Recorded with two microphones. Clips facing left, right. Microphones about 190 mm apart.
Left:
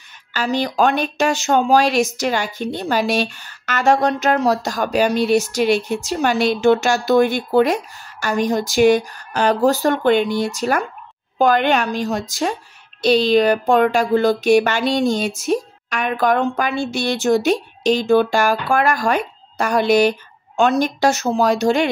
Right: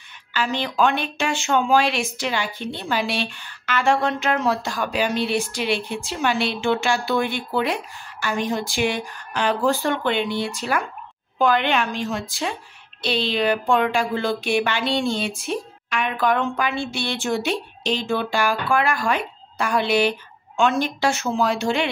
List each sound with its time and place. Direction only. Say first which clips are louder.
0.3 s a woman's voice: left 4 dB; 40° left (ahead or behind)